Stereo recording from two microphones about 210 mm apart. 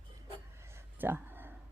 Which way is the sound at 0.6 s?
10° right (ahead or behind).